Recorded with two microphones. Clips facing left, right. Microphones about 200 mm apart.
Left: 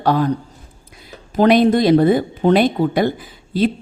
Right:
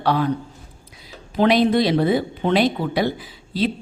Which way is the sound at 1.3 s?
45° left (ahead or behind).